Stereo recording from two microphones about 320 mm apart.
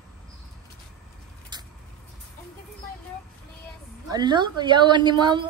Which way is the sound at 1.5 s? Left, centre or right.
Centre.